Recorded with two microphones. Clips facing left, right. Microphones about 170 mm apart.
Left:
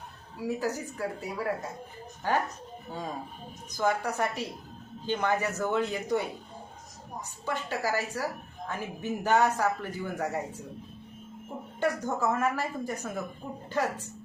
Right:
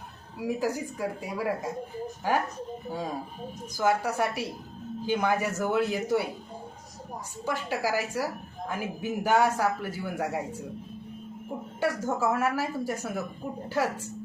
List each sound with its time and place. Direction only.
0.3 s a woman's voice: 10° right (ahead or behind)
3.8 s a woman's voice: 10° right (ahead or behind)
7.4 s a woman's voice: 10° right (ahead or behind)
11.8 s a woman's voice: 10° right (ahead or behind)